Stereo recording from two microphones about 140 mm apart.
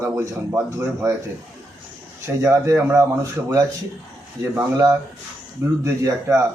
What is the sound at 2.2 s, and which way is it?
Speech, 20° right (ahead or behind).